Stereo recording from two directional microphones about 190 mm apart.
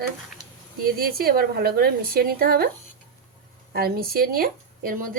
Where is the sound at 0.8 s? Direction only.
50° right (ahead or behind).